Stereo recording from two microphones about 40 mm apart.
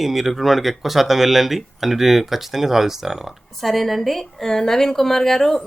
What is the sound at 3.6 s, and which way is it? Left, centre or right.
Speech, centre.